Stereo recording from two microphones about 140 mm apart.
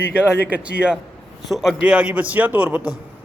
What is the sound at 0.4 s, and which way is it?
A man's voice, 10° right (ahead or behind).